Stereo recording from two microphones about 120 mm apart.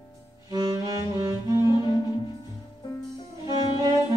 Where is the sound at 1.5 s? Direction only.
35° left (ahead or behind).